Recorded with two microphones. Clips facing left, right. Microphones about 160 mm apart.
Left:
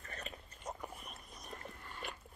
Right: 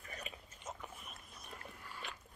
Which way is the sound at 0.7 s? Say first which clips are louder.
Left 3 dB; 35° left (ahead or behind).